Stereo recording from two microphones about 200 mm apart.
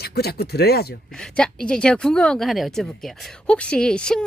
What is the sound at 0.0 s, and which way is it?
Speech, 50° left (ahead or behind).